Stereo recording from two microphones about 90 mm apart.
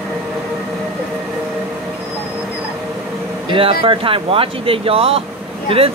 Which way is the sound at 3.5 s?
80° right.